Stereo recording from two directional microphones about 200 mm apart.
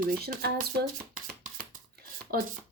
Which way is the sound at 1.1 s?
45° right (ahead or behind).